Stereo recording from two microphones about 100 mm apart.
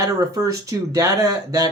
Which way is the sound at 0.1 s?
35° right (ahead or behind).